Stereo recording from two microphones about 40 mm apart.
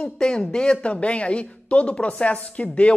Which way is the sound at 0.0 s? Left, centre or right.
Left.